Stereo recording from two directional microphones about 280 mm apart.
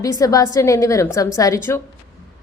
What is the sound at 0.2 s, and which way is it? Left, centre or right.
A woman's voice, centre.